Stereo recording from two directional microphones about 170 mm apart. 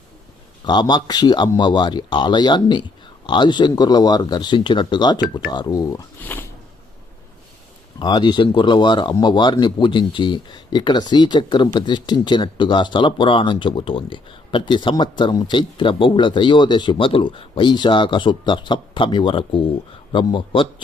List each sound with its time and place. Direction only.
0.6 s speech: 25° left (ahead or behind)
6.3 s a sound: 10° left (ahead or behind)
7.9 s speech: 25° left (ahead or behind)